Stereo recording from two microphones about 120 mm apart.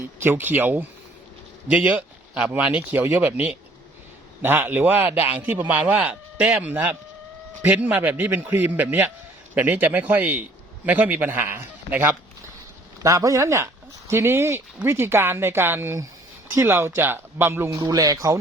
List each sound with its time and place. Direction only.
0.2 s a man's voice: 20° right (ahead or behind)
17.7 s speech: 30° right (ahead or behind)